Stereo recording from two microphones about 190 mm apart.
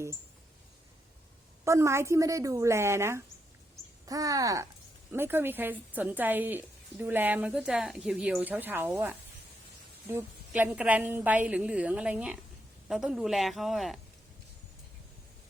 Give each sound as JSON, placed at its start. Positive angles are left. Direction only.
{"t": 1.6, "sound": "a woman's voice", "side_deg": -15}